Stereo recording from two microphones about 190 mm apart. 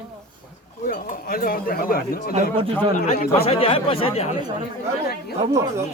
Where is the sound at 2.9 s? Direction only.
55° left (ahead or behind).